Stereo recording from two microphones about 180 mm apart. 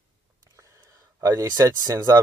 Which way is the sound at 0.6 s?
15° right (ahead or behind).